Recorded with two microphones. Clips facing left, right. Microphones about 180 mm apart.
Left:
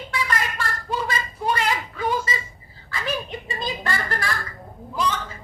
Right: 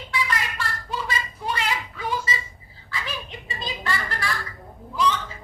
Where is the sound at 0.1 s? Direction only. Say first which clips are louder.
Left 1 dB; 45° left (ahead or behind).